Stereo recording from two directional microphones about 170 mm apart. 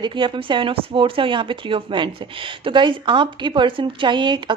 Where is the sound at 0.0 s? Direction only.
30° right (ahead or behind).